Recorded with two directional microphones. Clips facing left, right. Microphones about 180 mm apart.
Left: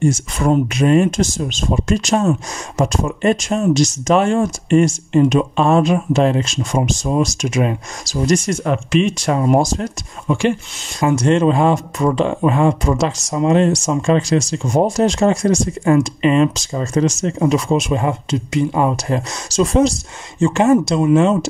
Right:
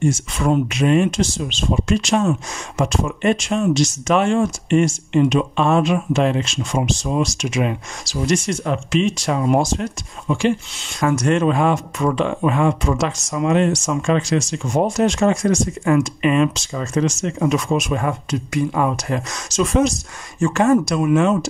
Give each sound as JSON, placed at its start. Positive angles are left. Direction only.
{"t": 0.0, "sound": "speech", "side_deg": 45}
{"t": 8.6, "sound": "speech", "side_deg": 55}
{"t": 10.2, "sound": "speech", "side_deg": 60}
{"t": 11.0, "sound": "speech", "side_deg": 30}